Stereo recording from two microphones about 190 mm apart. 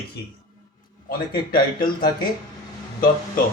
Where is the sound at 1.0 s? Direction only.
50° left (ahead or behind).